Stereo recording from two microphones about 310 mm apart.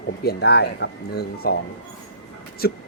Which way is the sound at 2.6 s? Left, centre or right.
Left.